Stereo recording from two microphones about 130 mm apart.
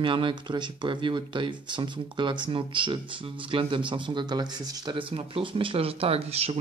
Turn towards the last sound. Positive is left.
turn(degrees=-50)  # may be behind; listen again after turning